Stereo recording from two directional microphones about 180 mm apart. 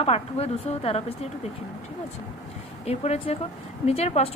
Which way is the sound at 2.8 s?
35° left (ahead or behind).